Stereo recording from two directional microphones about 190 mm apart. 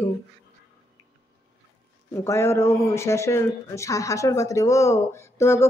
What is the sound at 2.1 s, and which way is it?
Speech, 15° left (ahead or behind).